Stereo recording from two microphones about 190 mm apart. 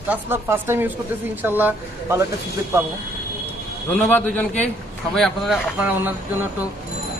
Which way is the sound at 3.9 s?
10° left (ahead or behind).